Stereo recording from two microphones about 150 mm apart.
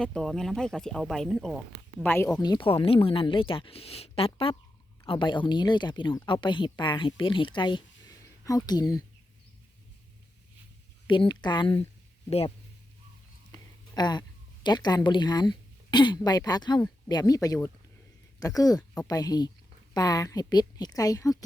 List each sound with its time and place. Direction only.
0.0 s speech: 5° left (ahead or behind)
2.0 s speech: 20° left (ahead or behind)
11.0 s speech: 30° left (ahead or behind)
13.9 s a woman's voice: 30° left (ahead or behind)